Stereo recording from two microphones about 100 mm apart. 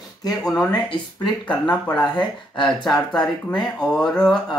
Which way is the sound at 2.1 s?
50° left (ahead or behind).